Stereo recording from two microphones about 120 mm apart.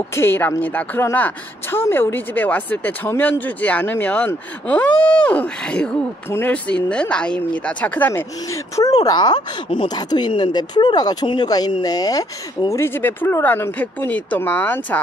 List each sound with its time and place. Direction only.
0.1 s speech: 20° left (ahead or behind)